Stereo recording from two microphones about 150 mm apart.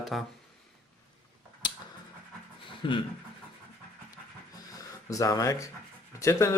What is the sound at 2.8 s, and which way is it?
Speech, 35° left (ahead or behind).